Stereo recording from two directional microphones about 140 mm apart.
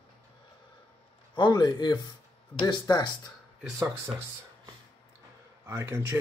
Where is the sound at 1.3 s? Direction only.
30° left (ahead or behind).